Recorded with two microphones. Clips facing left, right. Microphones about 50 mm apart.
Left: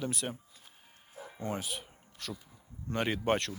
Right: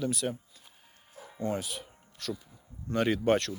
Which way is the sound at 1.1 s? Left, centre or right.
Centre.